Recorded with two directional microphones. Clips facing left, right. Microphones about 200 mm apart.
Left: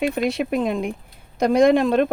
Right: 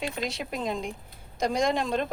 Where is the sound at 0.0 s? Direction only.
60° left (ahead or behind).